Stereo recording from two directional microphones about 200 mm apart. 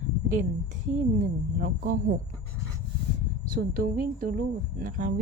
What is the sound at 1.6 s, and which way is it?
Speech, 40° right (ahead or behind).